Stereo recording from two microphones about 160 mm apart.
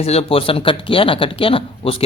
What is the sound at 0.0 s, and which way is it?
Speech, 40° left (ahead or behind).